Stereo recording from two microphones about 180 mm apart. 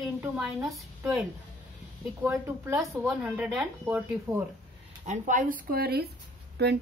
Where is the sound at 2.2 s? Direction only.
10° right (ahead or behind).